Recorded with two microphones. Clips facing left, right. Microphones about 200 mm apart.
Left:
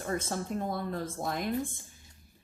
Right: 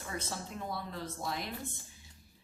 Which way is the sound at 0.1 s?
50° left (ahead or behind).